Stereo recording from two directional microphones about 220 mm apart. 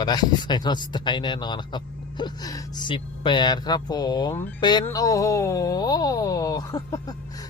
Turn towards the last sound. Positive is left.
turn(degrees=15)  # may be behind; listen again after turning